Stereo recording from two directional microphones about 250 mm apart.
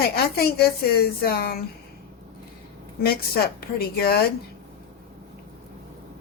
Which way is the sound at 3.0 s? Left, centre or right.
Left.